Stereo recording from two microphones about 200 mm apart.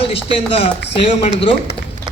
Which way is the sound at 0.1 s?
30° left (ahead or behind).